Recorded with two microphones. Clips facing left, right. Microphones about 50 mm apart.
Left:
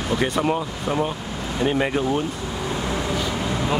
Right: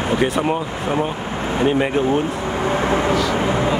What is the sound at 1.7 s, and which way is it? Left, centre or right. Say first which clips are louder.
Speech: right 3 dB; centre.